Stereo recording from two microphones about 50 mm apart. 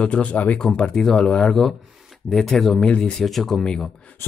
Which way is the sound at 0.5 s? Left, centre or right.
Centre.